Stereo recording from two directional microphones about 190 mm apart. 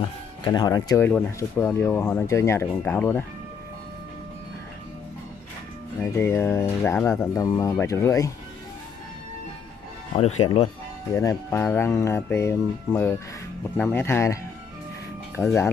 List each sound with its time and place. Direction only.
0.4 s speech: 20° left (ahead or behind)
6.1 s speech: 10° left (ahead or behind)
10.1 s speech: 35° left (ahead or behind)
11.1 s speech: 10° left (ahead or behind)
15.4 s speech: centre (ahead or behind)